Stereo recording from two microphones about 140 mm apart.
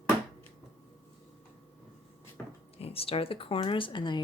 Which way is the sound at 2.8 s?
45° left (ahead or behind).